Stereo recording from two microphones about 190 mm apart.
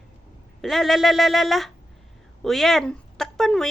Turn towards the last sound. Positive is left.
turn(degrees=0)  # may be behind; listen again after turning